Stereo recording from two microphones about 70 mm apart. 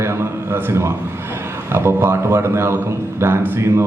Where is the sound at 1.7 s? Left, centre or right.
Right.